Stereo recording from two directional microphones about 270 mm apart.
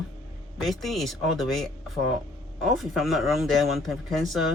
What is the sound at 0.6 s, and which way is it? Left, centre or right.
Speech, centre.